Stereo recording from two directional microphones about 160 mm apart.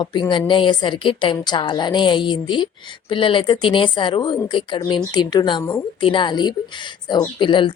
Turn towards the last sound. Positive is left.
turn(degrees=30)  # may be behind; listen again after turning